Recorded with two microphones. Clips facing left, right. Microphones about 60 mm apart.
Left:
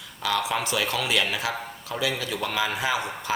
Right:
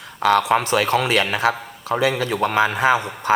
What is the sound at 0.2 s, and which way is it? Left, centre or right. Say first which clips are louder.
A man's voice: right 9 dB; right.